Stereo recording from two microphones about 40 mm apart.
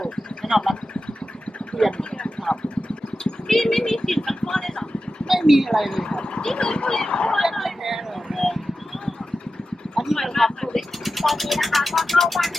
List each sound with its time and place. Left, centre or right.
0.5 s speech: centre
3.4 s speech: centre
4.4 s vehicle: centre
5.3 s speech: centre
6.1 s speech: left
7.3 s a sound: centre
10.2 s speech: centre